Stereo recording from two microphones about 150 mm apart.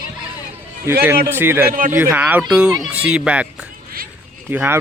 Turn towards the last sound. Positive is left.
turn(degrees=-10)  # may be behind; listen again after turning